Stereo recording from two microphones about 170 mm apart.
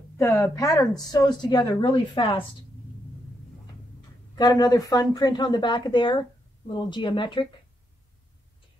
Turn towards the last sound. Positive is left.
turn(degrees=30)  # may be behind; listen again after turning